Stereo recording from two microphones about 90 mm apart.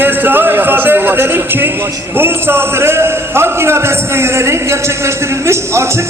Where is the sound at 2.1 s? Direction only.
25° right (ahead or behind).